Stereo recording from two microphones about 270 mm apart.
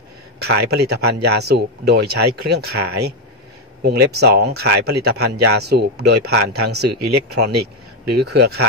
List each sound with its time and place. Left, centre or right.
0.4 s speech: right